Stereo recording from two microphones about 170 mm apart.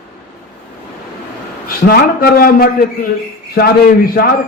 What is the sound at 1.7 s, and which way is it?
A man's voice, 65° left (ahead or behind).